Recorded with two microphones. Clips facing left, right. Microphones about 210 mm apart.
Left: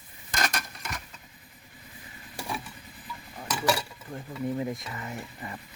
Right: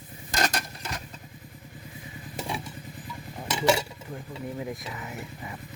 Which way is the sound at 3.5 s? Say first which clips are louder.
Right 4 dB; 25° right (ahead or behind).